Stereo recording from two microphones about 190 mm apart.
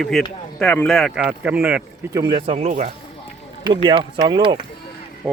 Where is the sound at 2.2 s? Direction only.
25° right (ahead or behind).